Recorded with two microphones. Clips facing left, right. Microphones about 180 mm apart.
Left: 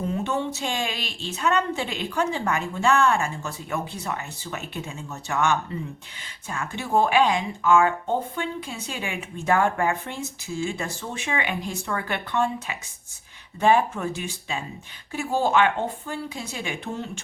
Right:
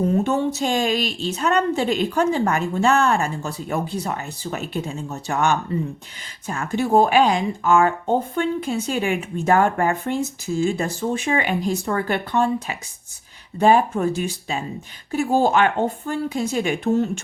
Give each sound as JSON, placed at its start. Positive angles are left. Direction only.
{"t": 0.3, "sound": "speech", "side_deg": -40}